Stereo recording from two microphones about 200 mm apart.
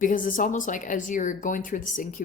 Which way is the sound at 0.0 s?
40° left (ahead or behind).